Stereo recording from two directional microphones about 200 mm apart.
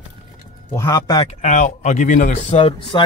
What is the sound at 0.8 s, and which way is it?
Speech, 20° left (ahead or behind).